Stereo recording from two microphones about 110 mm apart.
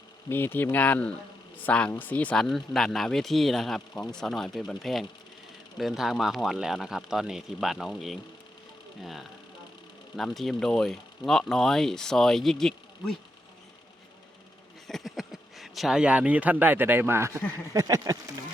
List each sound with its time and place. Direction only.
0.3 s speech: 20° left (ahead or behind); by 13.1 s 5° left (ahead or behind)
14.8 s speech: centre (ahead or behind); by 18.2 s 30° right (ahead or behind)